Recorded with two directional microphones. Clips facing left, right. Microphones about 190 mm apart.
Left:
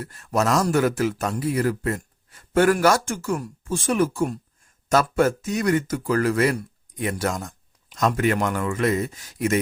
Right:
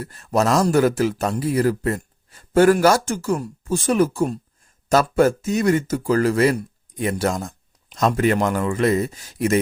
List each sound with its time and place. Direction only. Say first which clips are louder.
0.0 s speech: right 3 dB; 35° right (ahead or behind)